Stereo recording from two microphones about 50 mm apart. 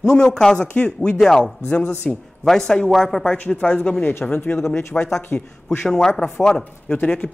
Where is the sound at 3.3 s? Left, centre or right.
Left.